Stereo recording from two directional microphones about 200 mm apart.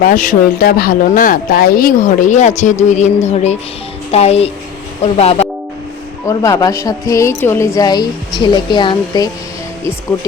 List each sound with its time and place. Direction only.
0.0 s speech: 45° left (ahead or behind)
6.2 s a woman's voice: 15° left (ahead or behind)